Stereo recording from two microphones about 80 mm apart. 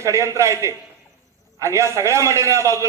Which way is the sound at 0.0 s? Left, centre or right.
Right.